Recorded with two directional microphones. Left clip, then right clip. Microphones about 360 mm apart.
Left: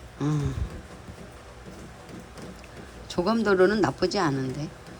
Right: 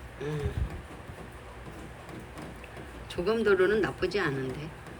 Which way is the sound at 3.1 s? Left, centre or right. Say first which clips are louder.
Left 2 dB; centre.